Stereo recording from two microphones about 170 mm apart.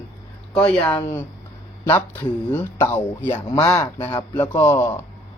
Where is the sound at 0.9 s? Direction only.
25° left (ahead or behind).